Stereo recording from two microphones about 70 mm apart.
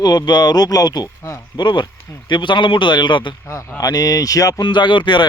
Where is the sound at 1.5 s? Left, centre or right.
Left.